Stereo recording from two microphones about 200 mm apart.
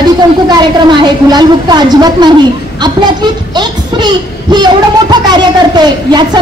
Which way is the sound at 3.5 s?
20° right (ahead or behind).